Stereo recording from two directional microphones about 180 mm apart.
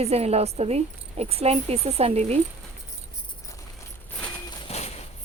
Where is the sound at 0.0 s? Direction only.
35° right (ahead or behind).